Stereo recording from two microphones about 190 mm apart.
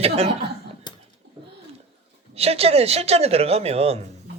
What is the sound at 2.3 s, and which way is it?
Speech, 30° right (ahead or behind).